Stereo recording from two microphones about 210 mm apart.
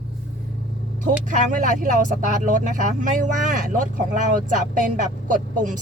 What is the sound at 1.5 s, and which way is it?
Speech, 40° right (ahead or behind).